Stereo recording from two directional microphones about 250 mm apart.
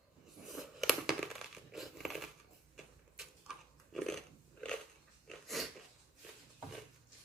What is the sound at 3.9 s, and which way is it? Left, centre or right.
Biting, centre.